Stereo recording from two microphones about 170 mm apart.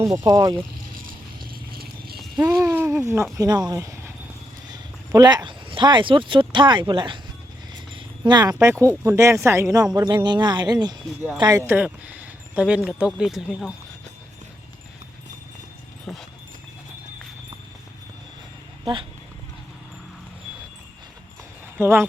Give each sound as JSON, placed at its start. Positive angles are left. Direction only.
{"t": 0.0, "sound": "speech", "side_deg": -20}
{"t": 1.7, "sound": "horse", "side_deg": -65}
{"t": 2.5, "sound": "a sound", "side_deg": -15}
{"t": 3.3, "sound": "speech", "side_deg": -20}
{"t": 7.9, "sound": "a sound", "side_deg": -25}
{"t": 8.5, "sound": "speech", "side_deg": -15}
{"t": 11.6, "sound": "speech", "side_deg": -10}
{"t": 16.1, "sound": "dog", "side_deg": 0}
{"t": 21.8, "sound": "speech", "side_deg": -15}